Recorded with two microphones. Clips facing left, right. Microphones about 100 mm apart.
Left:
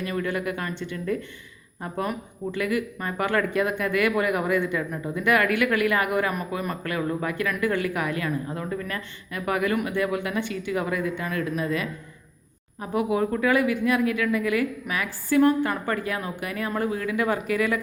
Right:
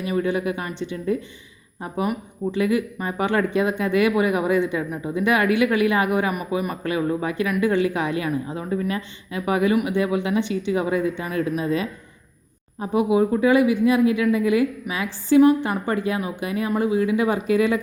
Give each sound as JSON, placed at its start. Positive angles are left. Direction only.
{"t": 0.0, "sound": "speech", "side_deg": -15}